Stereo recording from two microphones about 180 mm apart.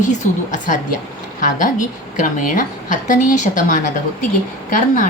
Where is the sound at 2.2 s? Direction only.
45° left (ahead or behind).